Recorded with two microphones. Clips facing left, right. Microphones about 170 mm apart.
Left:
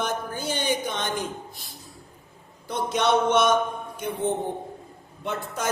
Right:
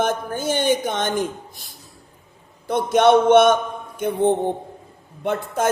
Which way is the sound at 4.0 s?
55° right (ahead or behind).